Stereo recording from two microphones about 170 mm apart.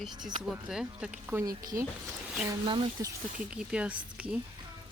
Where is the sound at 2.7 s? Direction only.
30° right (ahead or behind).